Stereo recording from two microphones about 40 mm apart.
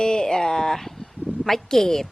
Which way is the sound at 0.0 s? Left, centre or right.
Centre.